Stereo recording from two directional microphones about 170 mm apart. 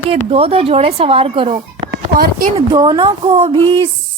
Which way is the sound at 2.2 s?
55° right (ahead or behind).